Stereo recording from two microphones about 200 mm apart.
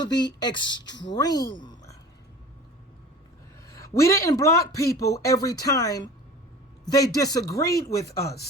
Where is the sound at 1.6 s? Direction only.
20° left (ahead or behind).